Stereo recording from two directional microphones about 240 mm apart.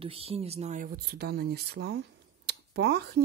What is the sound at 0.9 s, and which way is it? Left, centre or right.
Speech, right.